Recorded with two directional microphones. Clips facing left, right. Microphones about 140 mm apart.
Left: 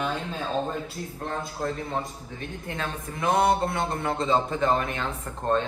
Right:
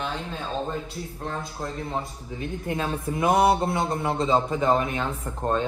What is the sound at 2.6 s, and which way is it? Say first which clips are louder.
Speech: right 6 dB; 20° right (ahead or behind).